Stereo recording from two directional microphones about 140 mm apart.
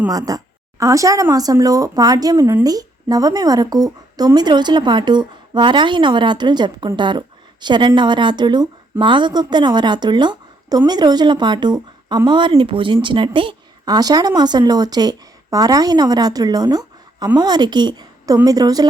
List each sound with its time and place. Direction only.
0.1 s a woman's voice: 25° right (ahead or behind)